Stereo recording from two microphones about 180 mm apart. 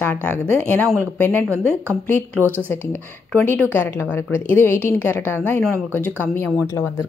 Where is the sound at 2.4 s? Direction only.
10° right (ahead or behind).